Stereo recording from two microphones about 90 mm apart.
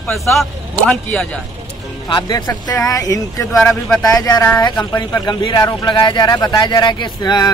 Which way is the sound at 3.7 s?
5° left (ahead or behind).